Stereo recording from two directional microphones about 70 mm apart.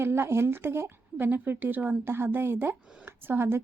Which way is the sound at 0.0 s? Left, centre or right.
Right.